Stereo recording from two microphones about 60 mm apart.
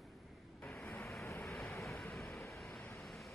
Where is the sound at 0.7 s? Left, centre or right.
Centre.